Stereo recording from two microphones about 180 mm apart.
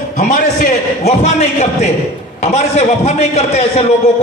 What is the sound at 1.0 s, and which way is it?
A man's voice, 35° left (ahead or behind).